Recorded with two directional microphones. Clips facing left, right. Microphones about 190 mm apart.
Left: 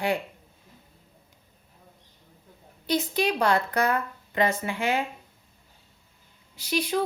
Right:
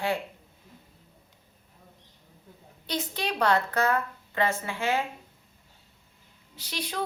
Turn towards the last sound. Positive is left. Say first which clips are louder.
# left 9 dB
turn(degrees=10)  # may be behind; listen again after turning